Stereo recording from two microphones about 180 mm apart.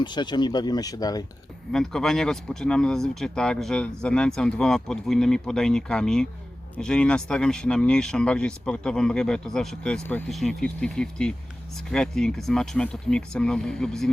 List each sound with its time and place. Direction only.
0.0 s speech: 25° left (ahead or behind)
1.7 s speech: 5° left (ahead or behind)